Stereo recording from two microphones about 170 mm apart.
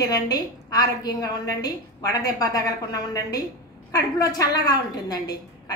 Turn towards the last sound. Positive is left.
turn(degrees=20)  # may be behind; listen again after turning